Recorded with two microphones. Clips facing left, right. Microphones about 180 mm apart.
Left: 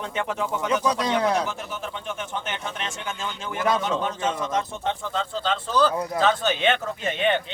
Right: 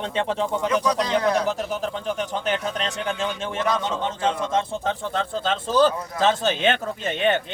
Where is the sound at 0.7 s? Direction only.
30° left (ahead or behind).